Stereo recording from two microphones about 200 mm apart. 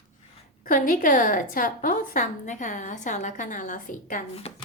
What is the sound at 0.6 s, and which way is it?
A woman's voice, 40° left (ahead or behind).